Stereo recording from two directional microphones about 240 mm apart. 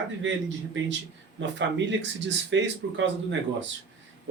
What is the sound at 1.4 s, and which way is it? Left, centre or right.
Speech, right.